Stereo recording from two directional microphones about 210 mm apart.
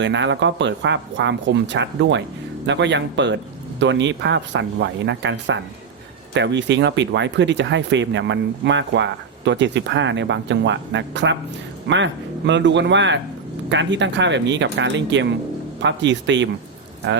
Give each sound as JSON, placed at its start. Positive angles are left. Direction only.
{"t": 0.0, "sound": "speech", "side_deg": -60}